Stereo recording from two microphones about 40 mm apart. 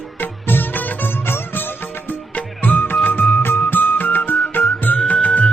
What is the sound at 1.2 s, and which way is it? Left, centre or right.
Music, left.